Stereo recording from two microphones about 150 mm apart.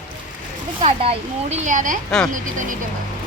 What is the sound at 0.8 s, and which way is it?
Speech, 40° right (ahead or behind).